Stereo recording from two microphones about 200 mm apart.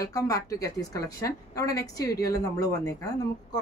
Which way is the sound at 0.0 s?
15° left (ahead or behind).